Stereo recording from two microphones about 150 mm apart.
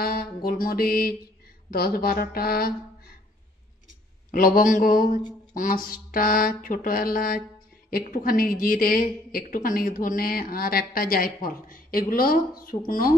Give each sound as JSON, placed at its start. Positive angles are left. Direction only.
{"t": 0.0, "sound": "a sound", "side_deg": 90}
{"t": 1.7, "sound": "mantra", "side_deg": 85}
{"t": 4.3, "sound": "a woman's voice", "side_deg": 70}